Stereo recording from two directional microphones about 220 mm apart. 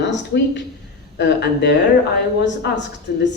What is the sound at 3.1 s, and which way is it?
Speech, 45° left (ahead or behind).